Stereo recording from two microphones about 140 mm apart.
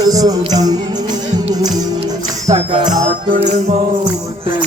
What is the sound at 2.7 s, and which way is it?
Music, 35° right (ahead or behind).